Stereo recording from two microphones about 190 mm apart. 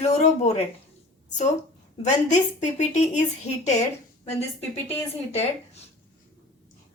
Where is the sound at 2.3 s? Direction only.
40° left (ahead or behind).